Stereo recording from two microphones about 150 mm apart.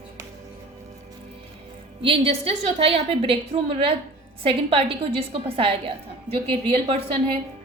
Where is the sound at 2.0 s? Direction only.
40° right (ahead or behind).